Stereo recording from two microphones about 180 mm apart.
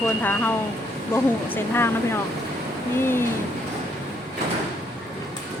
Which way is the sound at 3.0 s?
15° left (ahead or behind).